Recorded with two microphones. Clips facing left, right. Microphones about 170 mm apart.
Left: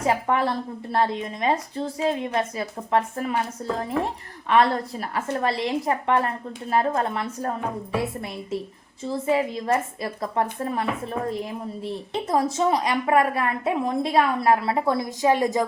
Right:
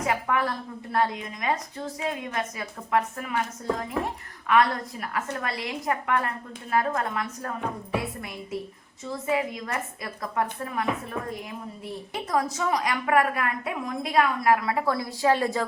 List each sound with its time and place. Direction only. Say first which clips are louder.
0.1 s a woman's voice: left 4 dB; 30° left (ahead or behind)
9.0 s a woman's voice: left 4 dB; 30° left (ahead or behind)